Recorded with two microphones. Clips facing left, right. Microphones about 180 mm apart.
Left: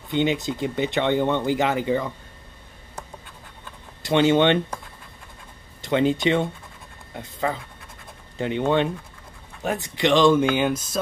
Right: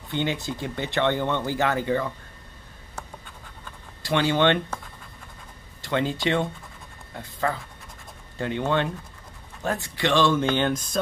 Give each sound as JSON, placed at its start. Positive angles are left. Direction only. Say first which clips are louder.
{"t": 0.1, "sound": "speech", "louder": "left 5 dB", "side_deg": 20}
{"t": 4.0, "sound": "speech", "louder": "left 4 dB", "side_deg": 20}
{"t": 5.8, "sound": "speech", "louder": "left 5 dB", "side_deg": 20}